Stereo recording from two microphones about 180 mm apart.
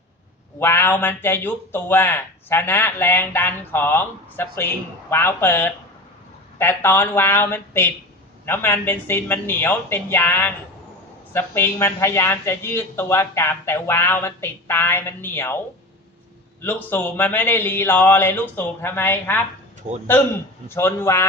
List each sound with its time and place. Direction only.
0.6 s a man's voice: 15° left (ahead or behind)
16.6 s a man's voice: 10° left (ahead or behind)
19.9 s a man's voice: 40° right (ahead or behind)
20.7 s a man's voice: 15° left (ahead or behind)